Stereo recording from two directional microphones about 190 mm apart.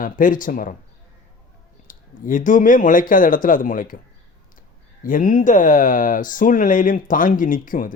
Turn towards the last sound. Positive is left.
turn(degrees=45)  # may be behind; listen again after turning